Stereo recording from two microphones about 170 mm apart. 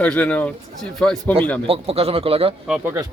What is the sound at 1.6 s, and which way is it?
Speech, 35° right (ahead or behind).